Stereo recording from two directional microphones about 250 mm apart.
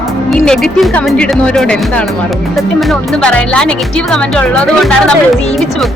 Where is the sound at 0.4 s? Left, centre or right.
Centre.